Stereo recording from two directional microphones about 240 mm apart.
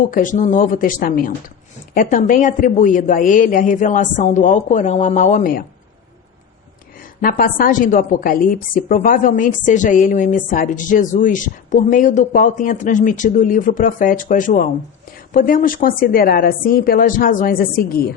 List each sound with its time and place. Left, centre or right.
0.1 s a woman's voice: left
7.2 s a woman's voice: left